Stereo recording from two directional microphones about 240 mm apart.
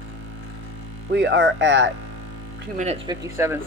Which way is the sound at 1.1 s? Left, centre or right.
Right.